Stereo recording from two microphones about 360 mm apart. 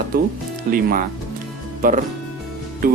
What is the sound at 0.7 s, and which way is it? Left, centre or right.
Speech, right.